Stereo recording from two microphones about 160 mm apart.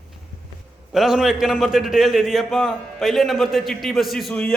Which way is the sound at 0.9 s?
Centre (ahead or behind).